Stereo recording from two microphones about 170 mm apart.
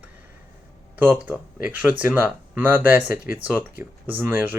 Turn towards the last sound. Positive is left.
turn(degrees=-10)  # may be behind; listen again after turning